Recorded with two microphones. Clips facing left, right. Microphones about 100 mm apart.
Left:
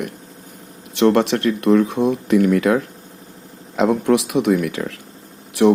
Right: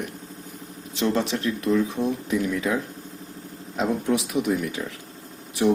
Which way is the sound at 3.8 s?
80° left.